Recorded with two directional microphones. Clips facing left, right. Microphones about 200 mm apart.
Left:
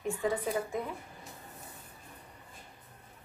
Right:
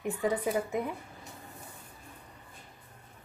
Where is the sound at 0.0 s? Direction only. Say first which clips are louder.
Right 2 dB; 20° right (ahead or behind).